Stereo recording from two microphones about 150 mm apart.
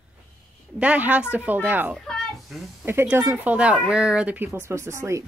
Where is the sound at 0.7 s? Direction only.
10° right (ahead or behind).